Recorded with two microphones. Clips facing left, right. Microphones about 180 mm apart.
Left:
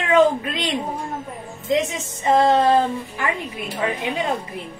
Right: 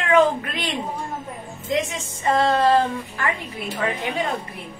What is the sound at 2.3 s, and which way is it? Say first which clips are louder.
Speech: left 2 dB; 20° left (ahead or behind).